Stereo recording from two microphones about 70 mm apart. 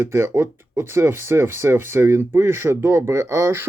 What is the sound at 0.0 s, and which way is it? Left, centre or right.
Speech, right.